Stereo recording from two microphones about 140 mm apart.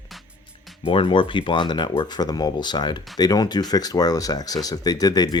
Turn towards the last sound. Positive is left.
turn(degrees=30)  # may be behind; listen again after turning